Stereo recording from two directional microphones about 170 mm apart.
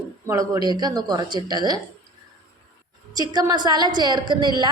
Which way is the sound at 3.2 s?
25° right (ahead or behind).